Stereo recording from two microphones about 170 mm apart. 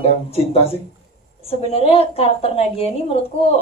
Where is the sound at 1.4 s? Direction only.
35° left (ahead or behind).